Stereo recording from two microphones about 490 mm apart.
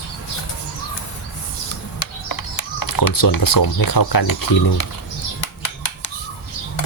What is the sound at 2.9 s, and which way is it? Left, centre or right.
Speech, left.